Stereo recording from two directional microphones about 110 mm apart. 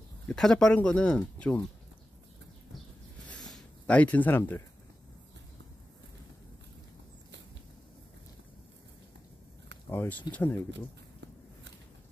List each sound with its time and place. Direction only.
0.3 s speech: 5° left (ahead or behind)
3.3 s a sound: 5° left (ahead or behind); by 4.6 s 20° left (ahead or behind)
9.8 s speech: 15° left (ahead or behind)